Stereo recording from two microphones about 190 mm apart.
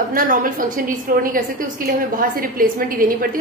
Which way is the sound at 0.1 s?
45° right (ahead or behind).